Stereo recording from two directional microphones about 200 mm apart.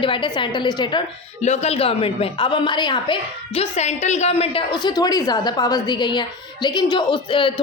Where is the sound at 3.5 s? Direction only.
35° left (ahead or behind).